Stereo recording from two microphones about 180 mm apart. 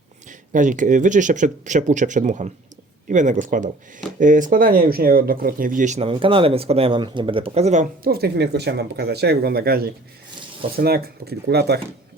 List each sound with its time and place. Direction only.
0.3 s speech: 45° right (ahead or behind)
8.1 s speech: 65° right (ahead or behind)